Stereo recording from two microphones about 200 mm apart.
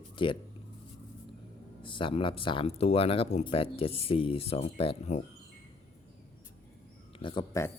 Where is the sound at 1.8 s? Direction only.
25° left (ahead or behind).